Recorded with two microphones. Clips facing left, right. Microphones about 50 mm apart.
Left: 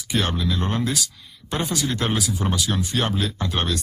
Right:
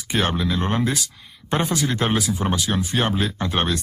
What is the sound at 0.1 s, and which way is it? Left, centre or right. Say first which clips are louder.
Speech: right 2 dB; right.